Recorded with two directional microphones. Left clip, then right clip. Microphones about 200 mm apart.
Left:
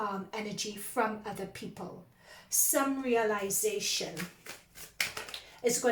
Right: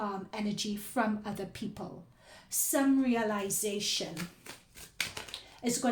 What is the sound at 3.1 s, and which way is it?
Speech, 40° right (ahead or behind).